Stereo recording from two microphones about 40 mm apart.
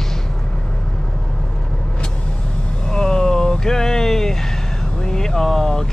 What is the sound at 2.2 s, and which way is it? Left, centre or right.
Vehicle, left.